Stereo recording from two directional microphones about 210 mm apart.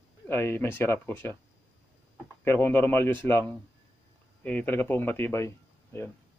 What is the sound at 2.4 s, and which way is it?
Speech, 10° left (ahead or behind).